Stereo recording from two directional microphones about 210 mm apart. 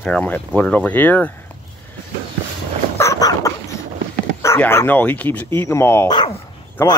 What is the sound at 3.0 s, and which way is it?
Dog, 15° left (ahead or behind).